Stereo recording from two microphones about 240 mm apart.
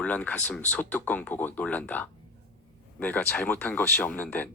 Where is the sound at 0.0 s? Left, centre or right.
Centre.